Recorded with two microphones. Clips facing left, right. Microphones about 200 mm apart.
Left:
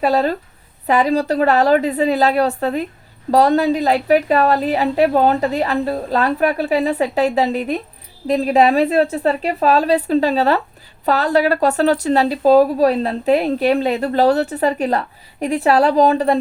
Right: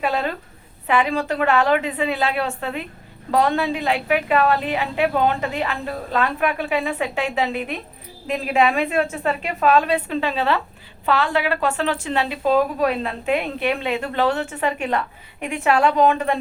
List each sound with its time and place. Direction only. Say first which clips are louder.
0.0 s a woman's voice: left 7 dB; 35° left (ahead or behind)